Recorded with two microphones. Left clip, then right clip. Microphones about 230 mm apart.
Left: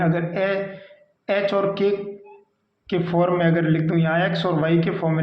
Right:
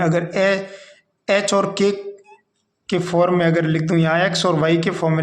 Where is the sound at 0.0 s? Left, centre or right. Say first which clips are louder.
Right 4 dB; right.